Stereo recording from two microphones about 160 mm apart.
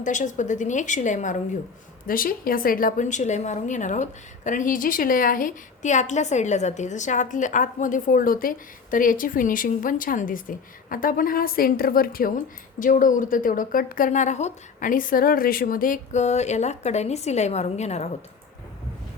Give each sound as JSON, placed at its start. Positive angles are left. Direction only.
{"t": 0.0, "sound": "a woman's voice", "side_deg": 50}
{"t": 2.0, "sound": "a woman's voice", "side_deg": 65}